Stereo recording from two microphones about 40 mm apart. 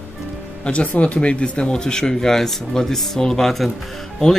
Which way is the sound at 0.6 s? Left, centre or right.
Left.